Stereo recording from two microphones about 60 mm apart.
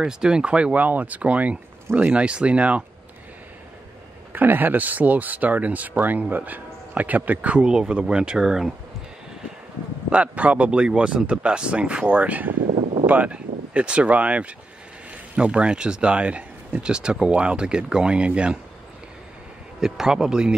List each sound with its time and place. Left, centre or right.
0.0 s speech: centre
4.3 s speech: right; by 8.7 s centre
10.0 s speech: right
19.8 s speech: centre